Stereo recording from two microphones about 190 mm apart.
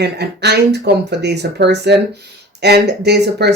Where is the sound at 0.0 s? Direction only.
60° right (ahead or behind).